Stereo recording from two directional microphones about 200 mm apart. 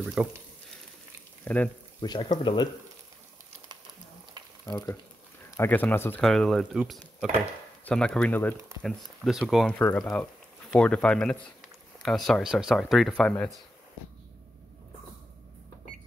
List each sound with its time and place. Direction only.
0.0 s speech: 5° right (ahead or behind)
1.4 s speech: 5° left (ahead or behind)
2.0 s speech: 25° left (ahead or behind)
4.6 s speech: 20° left (ahead or behind); by 13.5 s 5° left (ahead or behind)